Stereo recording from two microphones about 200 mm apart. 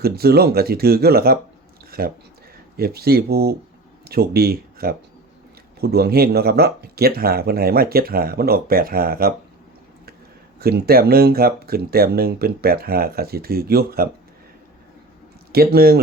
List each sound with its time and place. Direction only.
0.0 s speech: 50° right (ahead or behind)
1.9 s a sound: 50° right (ahead or behind)
2.7 s speech: 50° right (ahead or behind)
10.6 s speech: 50° right (ahead or behind)
15.5 s speech: 50° right (ahead or behind)